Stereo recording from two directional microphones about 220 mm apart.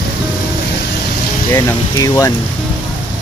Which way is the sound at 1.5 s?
15° left (ahead or behind).